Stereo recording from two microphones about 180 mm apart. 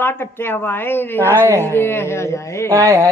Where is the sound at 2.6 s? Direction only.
20° right (ahead or behind).